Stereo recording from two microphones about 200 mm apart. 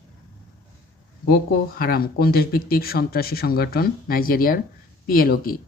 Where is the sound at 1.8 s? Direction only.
50° left (ahead or behind).